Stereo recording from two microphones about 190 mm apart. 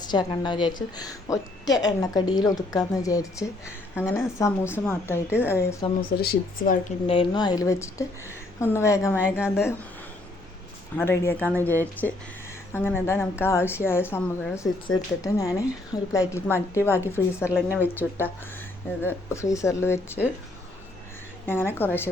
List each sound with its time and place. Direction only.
0.0 s a woman's voice: 20° left (ahead or behind)
6.0 s speech: 50° left (ahead or behind)
7.1 s a woman's voice: 25° left (ahead or behind)
10.9 s a woman's voice: 10° left (ahead or behind)
21.4 s a woman's voice: 10° left (ahead or behind)